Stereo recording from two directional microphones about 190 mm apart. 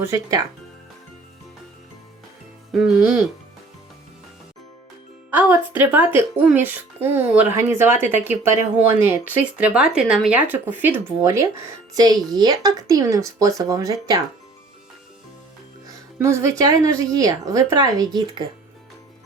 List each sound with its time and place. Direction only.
0.0 s speech: 15° right (ahead or behind)
2.7 s speech: 5° right (ahead or behind)
5.3 s speech: 10° right (ahead or behind)
16.1 s speech: 15° right (ahead or behind)